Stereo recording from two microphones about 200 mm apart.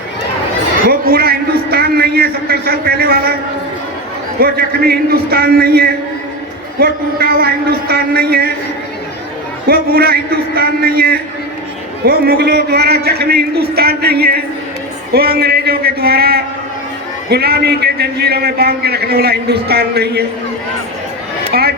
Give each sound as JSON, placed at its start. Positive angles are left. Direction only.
{"t": 0.9, "sound": "a man's voice", "side_deg": -50}
{"t": 4.4, "sound": "a man's voice", "side_deg": -50}
{"t": 9.6, "sound": "a man's voice", "side_deg": -50}
{"t": 21.5, "sound": "speech", "side_deg": -50}